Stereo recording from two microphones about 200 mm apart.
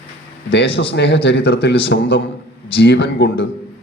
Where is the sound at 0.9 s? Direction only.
60° left (ahead or behind).